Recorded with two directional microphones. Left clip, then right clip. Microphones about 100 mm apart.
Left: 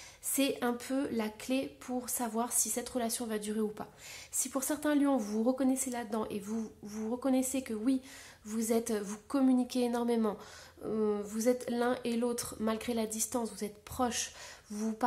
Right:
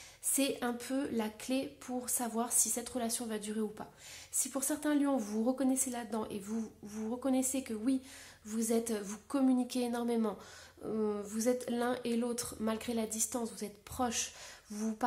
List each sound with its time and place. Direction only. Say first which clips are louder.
0.3 s a woman's voice: left 2 dB; 25° left (ahead or behind)